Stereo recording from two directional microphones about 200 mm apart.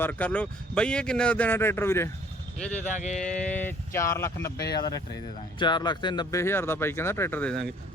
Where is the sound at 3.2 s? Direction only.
5° left (ahead or behind).